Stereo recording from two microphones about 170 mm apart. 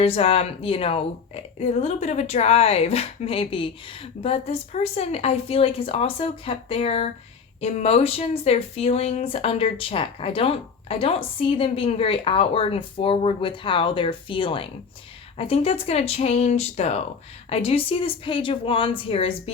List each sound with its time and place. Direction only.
0.0 s speech: 35° left (ahead or behind)